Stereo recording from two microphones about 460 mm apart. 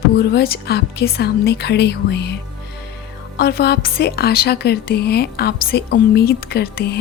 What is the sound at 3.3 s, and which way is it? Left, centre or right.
A woman's voice, left.